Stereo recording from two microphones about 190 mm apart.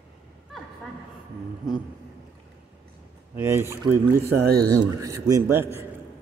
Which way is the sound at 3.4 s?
10° right (ahead or behind).